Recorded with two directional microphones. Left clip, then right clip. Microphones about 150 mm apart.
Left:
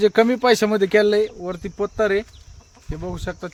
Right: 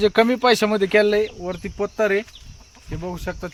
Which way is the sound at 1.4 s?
5° left (ahead or behind).